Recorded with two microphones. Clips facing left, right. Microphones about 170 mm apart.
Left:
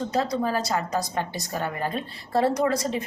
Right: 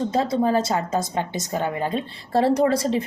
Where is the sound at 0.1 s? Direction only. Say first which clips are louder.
Right 3 dB; 25° right (ahead or behind).